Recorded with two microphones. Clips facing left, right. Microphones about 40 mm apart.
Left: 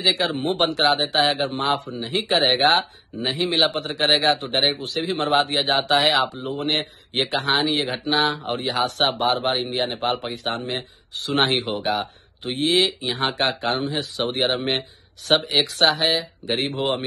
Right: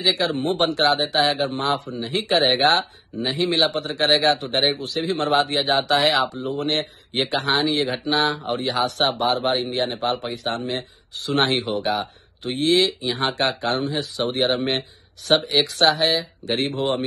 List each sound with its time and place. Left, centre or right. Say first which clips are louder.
0.0 s speech: even; left
2.8 s speech: right 1 dB; left
3.3 s speech: right 1 dB; left
4.5 s speech: even; left
4.7 s speech: right 1 dB; left
6.2 s speech: right 1 dB; left
6.6 s speech: left 1 dB; left
8.5 s speech: right 1 dB; left
9.9 s speech: even; left
11.5 s speech: even; left
13.7 s speech: even; left
13.9 s speech: right 1 dB; left